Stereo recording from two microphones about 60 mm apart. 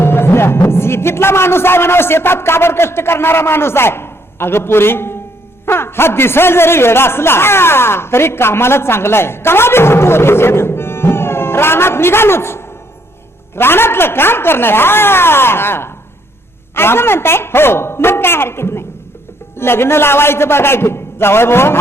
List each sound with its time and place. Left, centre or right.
0.0 s a man's voice: left